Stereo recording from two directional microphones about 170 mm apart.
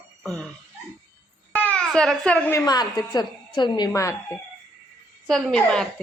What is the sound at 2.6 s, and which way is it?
A woman's voice, 25° left (ahead or behind).